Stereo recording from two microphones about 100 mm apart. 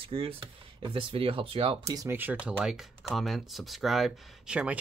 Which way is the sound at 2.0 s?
20° right (ahead or behind).